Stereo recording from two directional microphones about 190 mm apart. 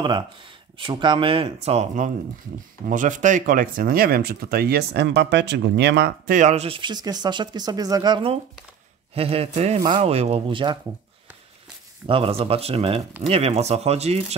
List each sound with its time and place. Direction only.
0.7 s speech: 25° right (ahead or behind)
12.1 s speech: 30° right (ahead or behind)